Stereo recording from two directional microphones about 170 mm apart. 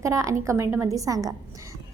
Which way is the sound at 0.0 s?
20° right (ahead or behind).